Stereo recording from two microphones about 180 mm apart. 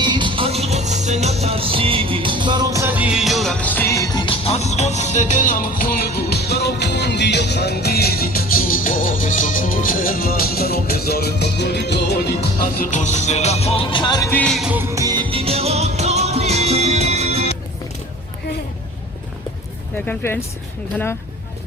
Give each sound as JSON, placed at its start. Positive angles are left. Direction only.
{"t": 0.0, "sound": "music", "side_deg": -25}
{"t": 14.4, "sound": "music", "side_deg": 0}
{"t": 20.1, "sound": "speech", "side_deg": 10}